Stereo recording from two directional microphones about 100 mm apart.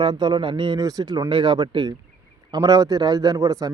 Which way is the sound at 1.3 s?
50° right (ahead or behind).